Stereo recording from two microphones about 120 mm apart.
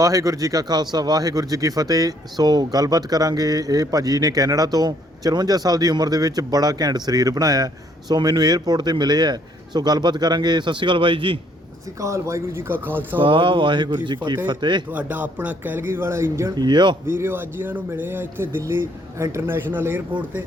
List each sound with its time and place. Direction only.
0.0 s speech: 30° right (ahead or behind); by 11.3 s 45° right (ahead or behind)
11.9 s speech: 25° right (ahead or behind)
13.1 s speech: 45° right (ahead or behind)
14.8 s speech: 15° right (ahead or behind)
16.6 s speech: 40° right (ahead or behind)
17.1 s speech: 20° right (ahead or behind)